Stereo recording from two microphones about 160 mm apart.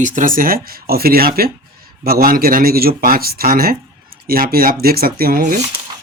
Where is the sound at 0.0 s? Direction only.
55° right (ahead or behind).